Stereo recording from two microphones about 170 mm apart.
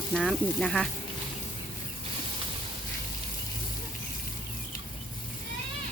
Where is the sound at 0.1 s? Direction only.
Centre (ahead or behind).